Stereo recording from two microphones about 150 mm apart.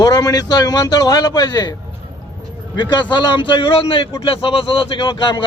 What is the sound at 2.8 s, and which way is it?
A man's voice, 30° left (ahead or behind).